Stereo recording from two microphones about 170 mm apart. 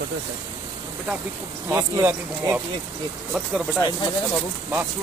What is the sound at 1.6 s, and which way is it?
Speech, 10° right (ahead or behind).